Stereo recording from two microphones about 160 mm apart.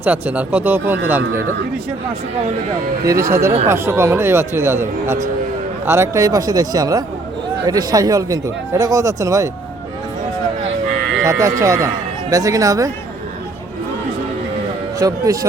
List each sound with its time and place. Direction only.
0.0 s a man's voice: 10° right (ahead or behind)
3.0 s a man's voice: 20° right (ahead or behind)
11.2 s speech: 20° right (ahead or behind)
14.9 s speech: 20° right (ahead or behind)